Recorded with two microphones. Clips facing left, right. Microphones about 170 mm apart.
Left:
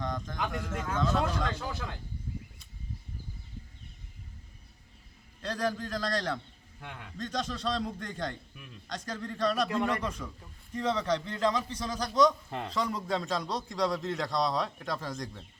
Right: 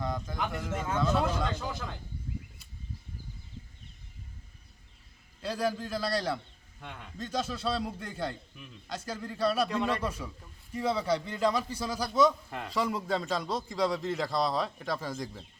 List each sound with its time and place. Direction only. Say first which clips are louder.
0.0 s a sound: right 1 dB; 10° right (ahead or behind)
0.9 s a man's voice: right 1 dB; 5° right (ahead or behind)
5.4 s a man's voice: right 1 dB; 5° right (ahead or behind)
6.8 s a man's voice: even; 5° left (ahead or behind)
7.2 s a man's voice: right 1 dB; 5° right (ahead or behind)
8.5 s a man's voice: right 1 dB; 5° left (ahead or behind)
8.9 s a man's voice: even; 5° right (ahead or behind)
12.5 s speech: left 2 dB; 25° left (ahead or behind)
12.7 s a man's voice: right 2 dB; 5° right (ahead or behind)